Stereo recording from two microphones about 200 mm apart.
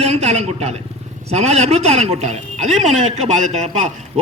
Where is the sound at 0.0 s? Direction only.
30° right (ahead or behind).